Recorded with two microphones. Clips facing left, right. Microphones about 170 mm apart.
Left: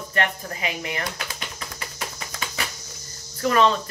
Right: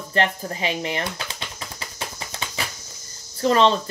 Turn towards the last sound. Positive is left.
turn(degrees=-30)  # may be behind; listen again after turning